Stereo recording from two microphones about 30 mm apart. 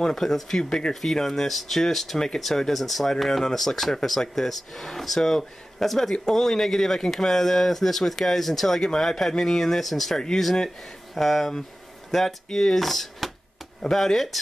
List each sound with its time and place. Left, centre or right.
0.0 s speech: centre
2.1 s speech: left
2.7 s speech: centre
10.1 s speech: centre
11.1 s speech: centre
12.8 s speech: centre